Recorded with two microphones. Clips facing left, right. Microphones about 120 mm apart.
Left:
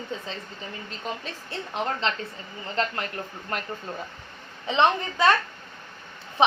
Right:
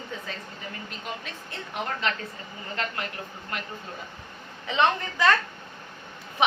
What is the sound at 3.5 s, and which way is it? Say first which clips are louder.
Speech: left 4 dB; 40° left (ahead or behind).